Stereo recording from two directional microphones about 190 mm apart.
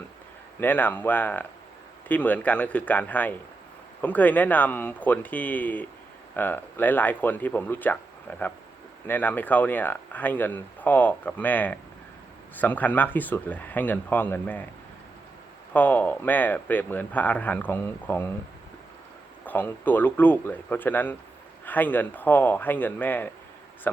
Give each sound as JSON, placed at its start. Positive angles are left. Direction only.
{"t": 0.6, "sound": "speech", "side_deg": 10}
{"t": 15.7, "sound": "speech", "side_deg": 10}
{"t": 19.5, "sound": "speech", "side_deg": 10}